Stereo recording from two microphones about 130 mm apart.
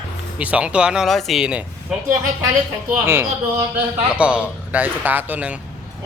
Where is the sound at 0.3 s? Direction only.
10° right (ahead or behind).